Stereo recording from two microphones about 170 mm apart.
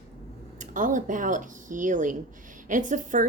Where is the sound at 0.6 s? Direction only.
50° right (ahead or behind).